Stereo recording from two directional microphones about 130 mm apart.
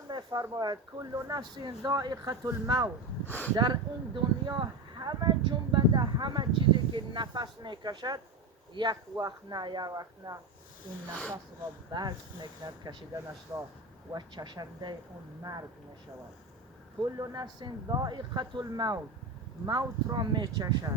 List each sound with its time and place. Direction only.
0.1 s a sound: 35° right (ahead or behind)
0.5 s speech: 30° right (ahead or behind)
3.2 s speech: 15° left (ahead or behind)
3.5 s speech: 35° right (ahead or behind)
11.1 s speech: 10° left (ahead or behind)
11.9 s speech: 35° right (ahead or behind)
14.1 s speech: 35° right (ahead or behind)
17.0 s speech: 35° right (ahead or behind)